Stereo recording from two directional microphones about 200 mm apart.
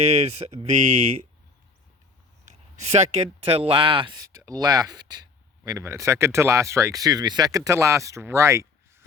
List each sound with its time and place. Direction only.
0.0 s speech: 35° right (ahead or behind)
2.4 s a sound: 35° right (ahead or behind)
3.4 s speech: 30° right (ahead or behind)